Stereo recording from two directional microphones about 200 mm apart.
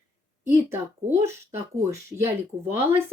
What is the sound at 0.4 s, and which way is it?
Speech, 10° right (ahead or behind).